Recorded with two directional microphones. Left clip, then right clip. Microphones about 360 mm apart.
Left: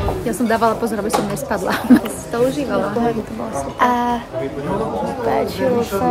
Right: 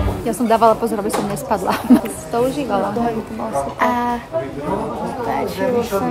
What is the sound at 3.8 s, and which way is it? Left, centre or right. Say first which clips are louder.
Speech: left 3 dB; centre.